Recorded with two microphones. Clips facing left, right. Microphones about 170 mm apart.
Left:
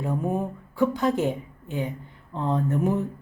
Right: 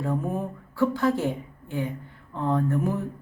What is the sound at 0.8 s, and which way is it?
A woman's voice, 20° left (ahead or behind).